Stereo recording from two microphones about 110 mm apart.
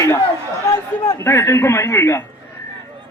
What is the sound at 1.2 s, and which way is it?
Speech, 25° left (ahead or behind).